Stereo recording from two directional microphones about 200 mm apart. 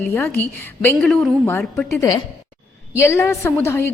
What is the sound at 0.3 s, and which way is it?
A woman's voice, 10° left (ahead or behind).